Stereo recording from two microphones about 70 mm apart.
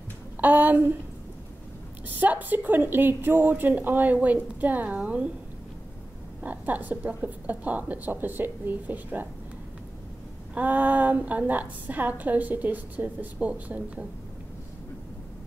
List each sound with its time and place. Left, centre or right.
0.4 s a woman's voice: right
2.0 s a woman's voice: right
6.4 s a woman's voice: right
10.5 s a woman's voice: right